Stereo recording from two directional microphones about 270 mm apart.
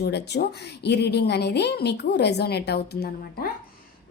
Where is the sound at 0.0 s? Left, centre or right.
Left.